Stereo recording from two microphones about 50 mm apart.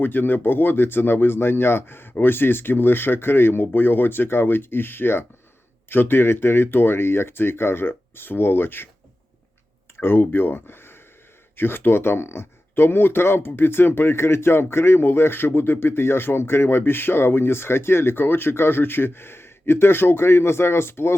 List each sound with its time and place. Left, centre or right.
0.0 s speech: left
10.0 s speech: left